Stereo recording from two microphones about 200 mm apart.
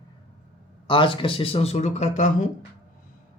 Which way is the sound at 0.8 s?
25° left (ahead or behind).